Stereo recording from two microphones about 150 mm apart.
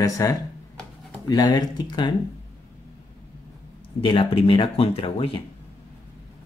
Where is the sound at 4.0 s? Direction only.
35° left (ahead or behind).